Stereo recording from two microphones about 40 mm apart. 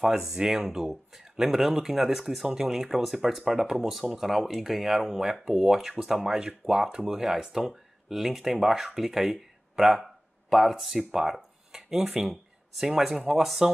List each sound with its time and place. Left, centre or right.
0.3 s speech: centre
0.7 s speech: centre